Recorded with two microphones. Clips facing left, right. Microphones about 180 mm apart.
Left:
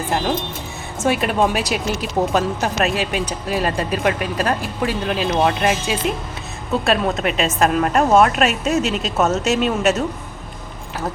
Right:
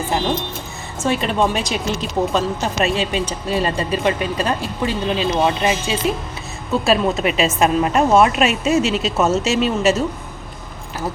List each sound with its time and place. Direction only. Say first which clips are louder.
1.0 s speech: left 1 dB; 10° left (ahead or behind)